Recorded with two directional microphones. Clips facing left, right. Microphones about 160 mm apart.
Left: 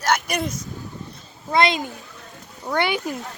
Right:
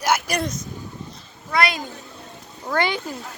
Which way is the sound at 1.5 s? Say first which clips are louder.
Left 3 dB; 25° left (ahead or behind).